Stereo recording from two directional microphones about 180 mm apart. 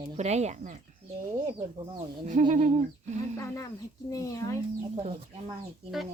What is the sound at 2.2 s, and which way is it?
Speech, 45° right (ahead or behind).